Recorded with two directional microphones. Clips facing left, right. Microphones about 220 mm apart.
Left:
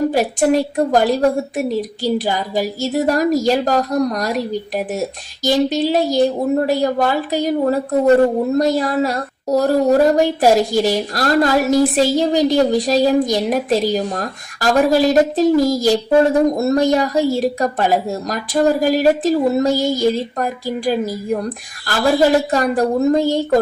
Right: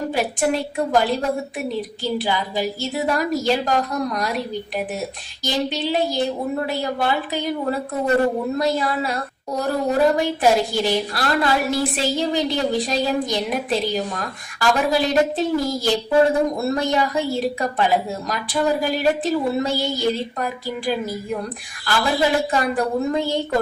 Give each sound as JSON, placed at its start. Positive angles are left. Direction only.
{"t": 0.1, "sound": "a woman's voice", "side_deg": 45}
{"t": 5.4, "sound": "a woman's voice", "side_deg": 45}